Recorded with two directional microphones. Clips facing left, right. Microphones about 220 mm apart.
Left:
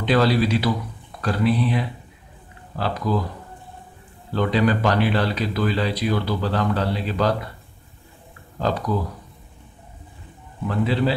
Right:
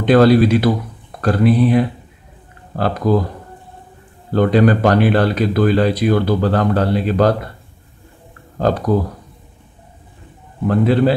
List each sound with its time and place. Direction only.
0.0 s speech: 50° right (ahead or behind)
4.3 s speech: 50° right (ahead or behind)
8.5 s speech: 50° right (ahead or behind)
10.7 s speech: 50° right (ahead or behind)